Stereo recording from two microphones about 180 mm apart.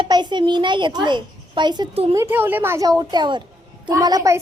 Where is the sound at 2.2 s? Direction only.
10° right (ahead or behind).